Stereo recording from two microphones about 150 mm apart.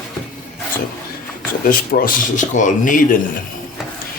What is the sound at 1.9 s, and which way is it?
Speech, 90° left.